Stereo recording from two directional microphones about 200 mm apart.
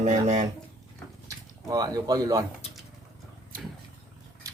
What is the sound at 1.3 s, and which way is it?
Speech, 20° right (ahead or behind).